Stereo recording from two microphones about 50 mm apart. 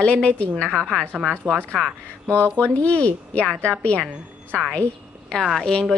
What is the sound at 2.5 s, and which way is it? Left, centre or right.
Speech, left.